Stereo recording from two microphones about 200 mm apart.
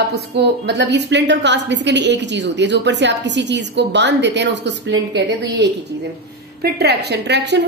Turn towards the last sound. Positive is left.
turn(degrees=-60)  # may be behind; listen again after turning